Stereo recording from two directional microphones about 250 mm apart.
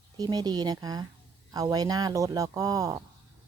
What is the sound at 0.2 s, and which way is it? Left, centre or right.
Speech, centre.